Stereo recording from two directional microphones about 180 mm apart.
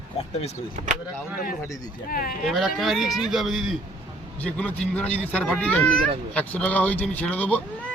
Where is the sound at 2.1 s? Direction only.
50° left (ahead or behind).